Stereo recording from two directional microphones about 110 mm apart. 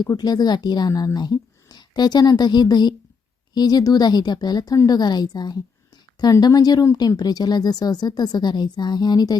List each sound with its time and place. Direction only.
0.1 s a woman's voice: 35° left (ahead or behind)